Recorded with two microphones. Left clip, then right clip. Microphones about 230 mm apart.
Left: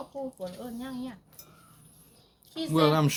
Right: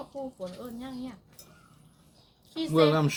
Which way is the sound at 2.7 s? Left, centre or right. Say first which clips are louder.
Right 1 dB; left.